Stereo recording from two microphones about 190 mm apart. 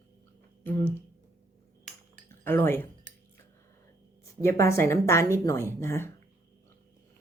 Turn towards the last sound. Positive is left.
turn(degrees=15)  # may be behind; listen again after turning